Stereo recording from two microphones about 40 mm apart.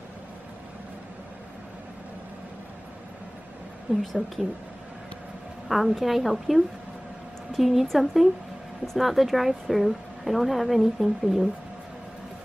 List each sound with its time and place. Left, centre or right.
3.9 s a woman's voice: right
5.7 s a woman's voice: centre